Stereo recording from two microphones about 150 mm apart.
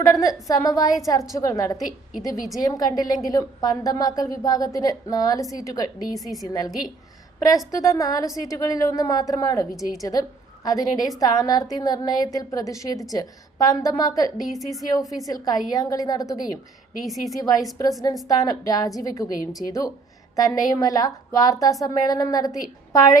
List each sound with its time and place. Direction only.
0.1 s a woman's voice: 25° left (ahead or behind)
7.7 s a woman's voice: 20° left (ahead or behind)
14.4 s a woman's voice: centre (ahead or behind)
15.3 s a woman's voice: 25° left (ahead or behind)
17.0 s a woman's voice: centre (ahead or behind)
17.3 s a woman's voice: 25° left (ahead or behind)